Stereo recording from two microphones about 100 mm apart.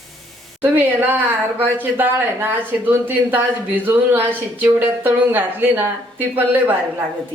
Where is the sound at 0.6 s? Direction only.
20° right (ahead or behind).